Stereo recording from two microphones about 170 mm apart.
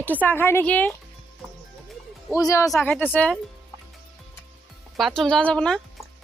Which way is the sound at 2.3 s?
20° left (ahead or behind).